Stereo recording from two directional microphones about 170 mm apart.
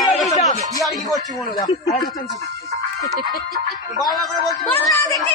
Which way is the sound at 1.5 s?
20° left (ahead or behind).